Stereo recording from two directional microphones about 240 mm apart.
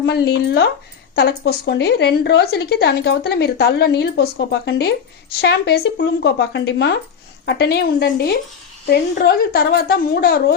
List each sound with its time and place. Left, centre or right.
0.0 s a woman's voice: left